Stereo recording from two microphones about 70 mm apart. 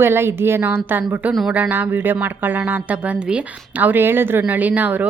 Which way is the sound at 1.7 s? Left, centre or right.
Right.